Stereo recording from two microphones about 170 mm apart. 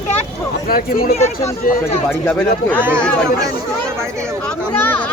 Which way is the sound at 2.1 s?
5° left (ahead or behind).